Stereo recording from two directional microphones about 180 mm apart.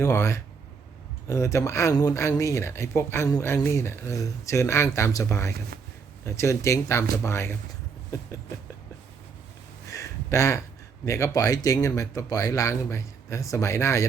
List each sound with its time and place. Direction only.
0.0 s speech: 15° left (ahead or behind)
9.9 s a sound: 15° left (ahead or behind)
11.0 s speech: 15° left (ahead or behind)